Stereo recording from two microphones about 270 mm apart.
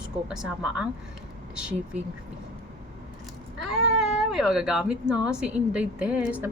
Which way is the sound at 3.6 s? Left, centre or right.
Centre.